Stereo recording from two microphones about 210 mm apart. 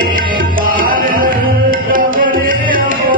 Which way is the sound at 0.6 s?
40° right (ahead or behind).